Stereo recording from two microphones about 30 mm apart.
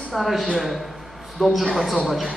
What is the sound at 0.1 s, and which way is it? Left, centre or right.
A man's voice, centre.